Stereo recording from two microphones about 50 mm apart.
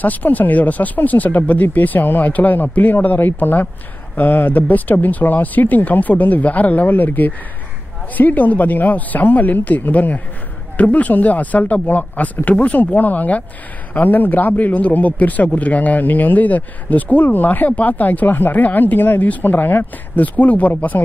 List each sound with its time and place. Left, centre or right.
0.0 s speech: left